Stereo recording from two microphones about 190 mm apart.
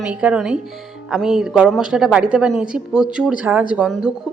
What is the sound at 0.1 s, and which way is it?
A woman's voice, 5° right (ahead or behind).